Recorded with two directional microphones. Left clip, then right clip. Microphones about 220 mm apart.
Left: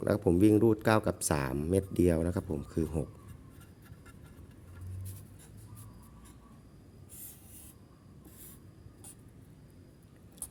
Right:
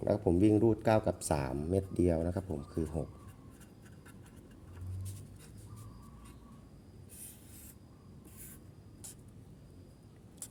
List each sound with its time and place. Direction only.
0.0 s speech: 20° left (ahead or behind)